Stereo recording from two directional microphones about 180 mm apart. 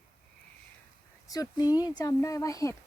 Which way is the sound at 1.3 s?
20° left (ahead or behind).